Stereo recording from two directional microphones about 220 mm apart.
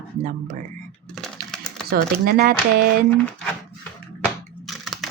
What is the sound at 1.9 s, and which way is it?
Speech, 45° right (ahead or behind).